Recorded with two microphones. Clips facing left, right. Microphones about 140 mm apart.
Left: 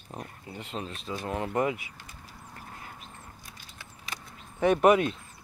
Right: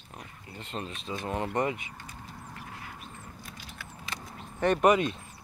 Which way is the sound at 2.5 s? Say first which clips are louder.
Left 1 dB; 40° left (ahead or behind).